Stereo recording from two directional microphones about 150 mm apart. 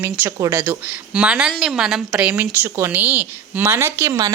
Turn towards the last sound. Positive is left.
turn(degrees=-15)  # may be behind; listen again after turning